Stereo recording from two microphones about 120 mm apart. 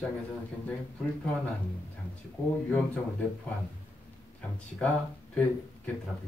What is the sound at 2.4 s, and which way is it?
Speech, 15° left (ahead or behind).